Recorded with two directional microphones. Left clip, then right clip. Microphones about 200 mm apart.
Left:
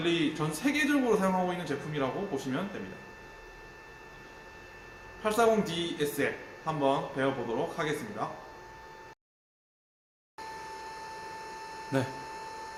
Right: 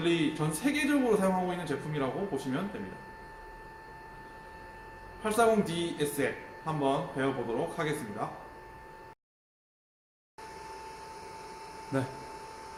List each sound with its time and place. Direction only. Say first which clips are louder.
0.0 s speech: even; centre (ahead or behind)
5.2 s speech: even; centre (ahead or behind)
11.9 s speech: left 2 dB; 45° left (ahead or behind)